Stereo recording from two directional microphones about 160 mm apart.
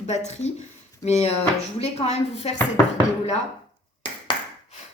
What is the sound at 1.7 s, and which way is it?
Speech, 40° left (ahead or behind).